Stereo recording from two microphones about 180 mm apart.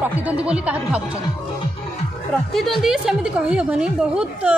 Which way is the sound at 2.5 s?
Centre (ahead or behind).